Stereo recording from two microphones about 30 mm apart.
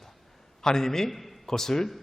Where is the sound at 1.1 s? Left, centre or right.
Centre.